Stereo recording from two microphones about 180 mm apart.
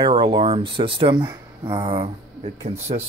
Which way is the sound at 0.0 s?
30° right (ahead or behind).